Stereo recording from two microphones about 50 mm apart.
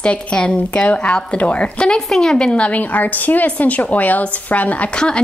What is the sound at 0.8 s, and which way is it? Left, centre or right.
Speech, left.